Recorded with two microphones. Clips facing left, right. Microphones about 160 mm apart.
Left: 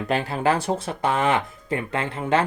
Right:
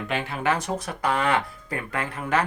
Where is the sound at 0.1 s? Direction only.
35° left (ahead or behind).